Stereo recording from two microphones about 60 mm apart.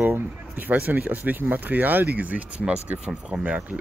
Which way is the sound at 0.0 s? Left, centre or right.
Right.